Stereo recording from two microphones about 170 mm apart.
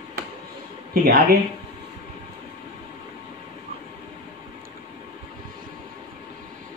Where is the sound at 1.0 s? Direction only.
65° right (ahead or behind).